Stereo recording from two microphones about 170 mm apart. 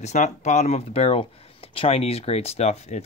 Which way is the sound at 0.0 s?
40° left (ahead or behind).